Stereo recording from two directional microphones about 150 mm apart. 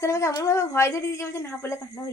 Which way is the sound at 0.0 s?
20° left (ahead or behind).